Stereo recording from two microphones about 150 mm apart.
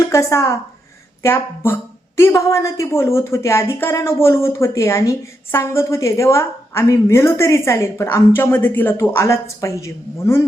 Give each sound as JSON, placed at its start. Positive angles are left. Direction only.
{"t": 0.0, "sound": "a woman's voice", "side_deg": 20}